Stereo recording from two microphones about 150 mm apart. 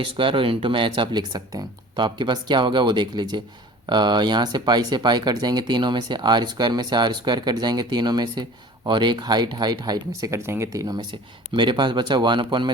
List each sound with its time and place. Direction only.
0.0 s speech: 35° right (ahead or behind)